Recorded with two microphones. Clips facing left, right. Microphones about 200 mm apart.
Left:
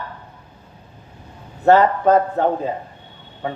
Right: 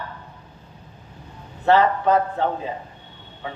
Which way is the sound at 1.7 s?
45° left (ahead or behind).